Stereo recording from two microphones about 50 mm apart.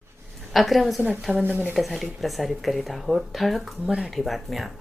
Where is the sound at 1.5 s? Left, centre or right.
Right.